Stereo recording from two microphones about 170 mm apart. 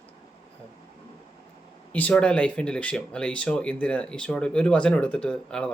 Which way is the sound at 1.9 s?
10° left (ahead or behind).